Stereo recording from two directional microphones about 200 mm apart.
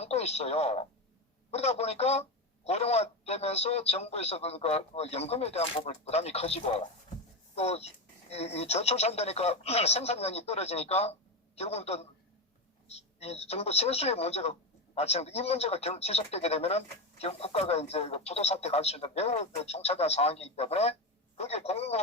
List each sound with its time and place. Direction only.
0.0 s speech: 30° left (ahead or behind)